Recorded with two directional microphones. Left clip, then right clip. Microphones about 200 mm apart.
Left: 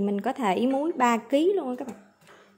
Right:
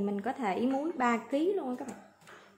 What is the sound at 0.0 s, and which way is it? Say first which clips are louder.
Speech: left 6 dB; 35° left (ahead or behind).